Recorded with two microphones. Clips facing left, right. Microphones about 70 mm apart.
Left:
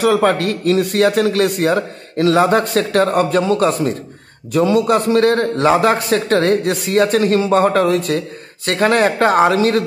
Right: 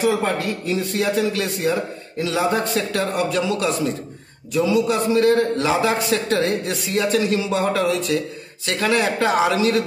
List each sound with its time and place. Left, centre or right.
0.0 s a man's voice: left